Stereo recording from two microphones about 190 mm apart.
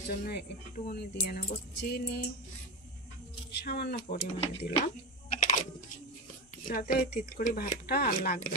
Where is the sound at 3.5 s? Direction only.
60° left (ahead or behind).